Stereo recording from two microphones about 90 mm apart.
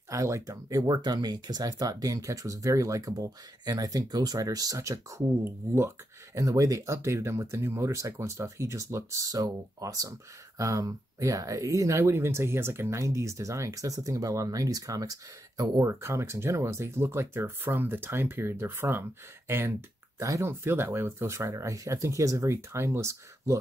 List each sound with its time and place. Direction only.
0.1 s speech: 35° right (ahead or behind)